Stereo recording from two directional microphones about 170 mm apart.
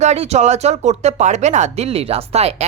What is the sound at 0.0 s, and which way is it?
Speech, 40° right (ahead or behind).